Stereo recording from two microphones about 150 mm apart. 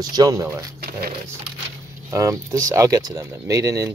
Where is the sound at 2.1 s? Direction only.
20° right (ahead or behind).